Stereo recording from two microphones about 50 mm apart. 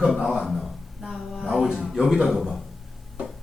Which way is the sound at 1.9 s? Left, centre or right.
Centre.